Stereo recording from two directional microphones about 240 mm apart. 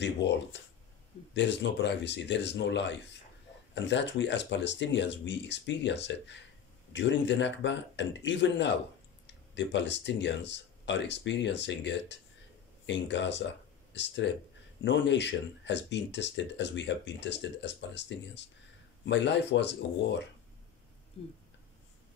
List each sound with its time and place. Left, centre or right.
0.0 s speech: left